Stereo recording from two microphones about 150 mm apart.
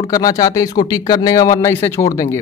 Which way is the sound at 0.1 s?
25° left (ahead or behind).